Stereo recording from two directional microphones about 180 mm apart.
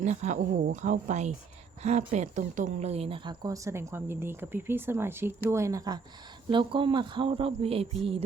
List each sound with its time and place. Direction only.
0.0 s speech: 40° right (ahead or behind)